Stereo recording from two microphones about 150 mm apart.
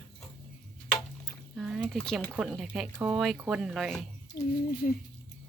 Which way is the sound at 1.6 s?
5° right (ahead or behind).